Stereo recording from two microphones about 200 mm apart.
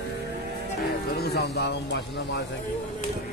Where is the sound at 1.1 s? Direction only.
55° left (ahead or behind).